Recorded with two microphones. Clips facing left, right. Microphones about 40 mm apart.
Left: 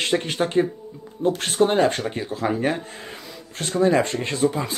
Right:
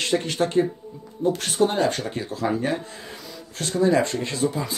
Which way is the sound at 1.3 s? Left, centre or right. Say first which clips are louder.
Left 2 dB; left.